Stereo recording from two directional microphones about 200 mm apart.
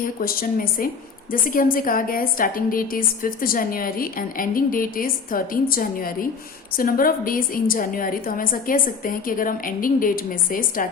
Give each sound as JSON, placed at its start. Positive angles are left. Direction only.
{"t": 0.0, "sound": "a woman's voice", "side_deg": 45}